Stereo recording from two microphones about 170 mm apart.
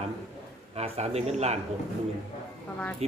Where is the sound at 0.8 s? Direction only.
40° right (ahead or behind).